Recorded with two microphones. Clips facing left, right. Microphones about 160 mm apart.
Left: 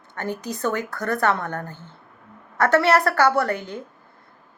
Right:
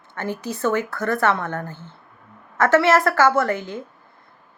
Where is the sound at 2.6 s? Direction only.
40° left (ahead or behind).